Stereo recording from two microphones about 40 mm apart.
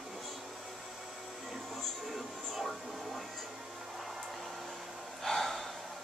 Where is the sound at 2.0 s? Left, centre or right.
Centre.